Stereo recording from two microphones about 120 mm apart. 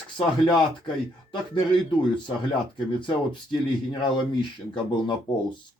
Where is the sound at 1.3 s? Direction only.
45° left (ahead or behind).